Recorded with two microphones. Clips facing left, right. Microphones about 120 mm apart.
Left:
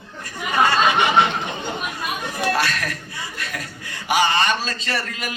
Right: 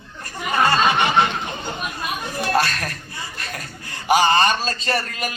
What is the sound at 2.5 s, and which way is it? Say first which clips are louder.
Chuckle: right 5 dB; 30° right (ahead or behind).